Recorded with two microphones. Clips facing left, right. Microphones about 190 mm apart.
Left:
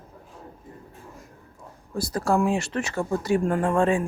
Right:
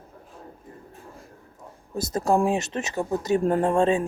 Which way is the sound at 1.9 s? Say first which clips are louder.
Right 1 dB; 20° right (ahead or behind).